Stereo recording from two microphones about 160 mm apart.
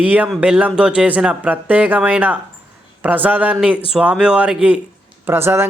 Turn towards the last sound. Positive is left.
turn(degrees=-15)  # may be behind; listen again after turning